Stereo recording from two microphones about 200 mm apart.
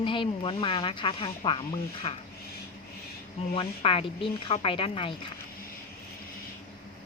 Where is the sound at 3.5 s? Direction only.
30° left (ahead or behind).